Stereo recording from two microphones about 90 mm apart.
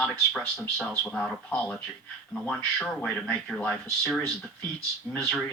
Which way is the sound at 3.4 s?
5° left (ahead or behind).